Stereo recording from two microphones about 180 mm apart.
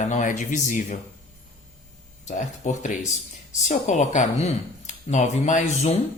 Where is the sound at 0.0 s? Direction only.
45° left (ahead or behind).